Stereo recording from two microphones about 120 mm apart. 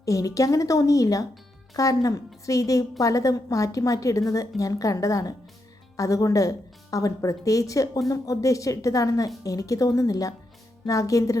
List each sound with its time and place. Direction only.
0.0 s a woman's voice: 30° left (ahead or behind)